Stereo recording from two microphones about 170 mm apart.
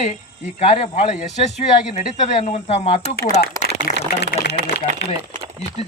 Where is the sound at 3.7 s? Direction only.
80° left.